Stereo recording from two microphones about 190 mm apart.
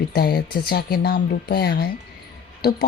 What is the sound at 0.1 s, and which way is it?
Speech, 55° left (ahead or behind).